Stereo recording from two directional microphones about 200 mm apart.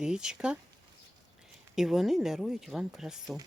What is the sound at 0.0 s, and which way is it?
Speech, 5° right (ahead or behind).